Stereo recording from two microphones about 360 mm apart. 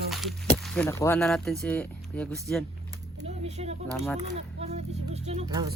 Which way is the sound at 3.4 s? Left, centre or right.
Centre.